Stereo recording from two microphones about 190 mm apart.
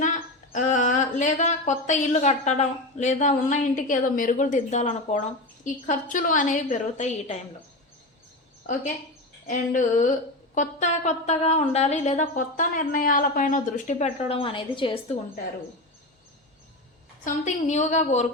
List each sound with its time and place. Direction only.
0.5 s a woman's voice: 40° left (ahead or behind)
8.6 s a woman's voice: 40° left (ahead or behind)
17.2 s speech: 40° left (ahead or behind)